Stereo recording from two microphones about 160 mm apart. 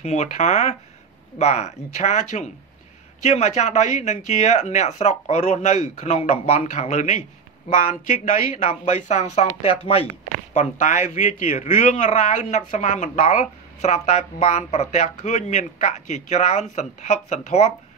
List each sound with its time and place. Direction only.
0.0 s speech: 45° left (ahead or behind)